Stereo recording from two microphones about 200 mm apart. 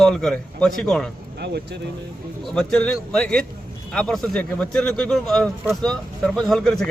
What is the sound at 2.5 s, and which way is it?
A man's voice, 5° left (ahead or behind).